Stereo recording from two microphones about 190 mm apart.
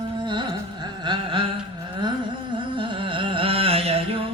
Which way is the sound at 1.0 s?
25° right (ahead or behind).